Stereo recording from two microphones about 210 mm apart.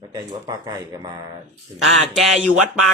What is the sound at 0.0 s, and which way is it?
Speech, 20° right (ahead or behind).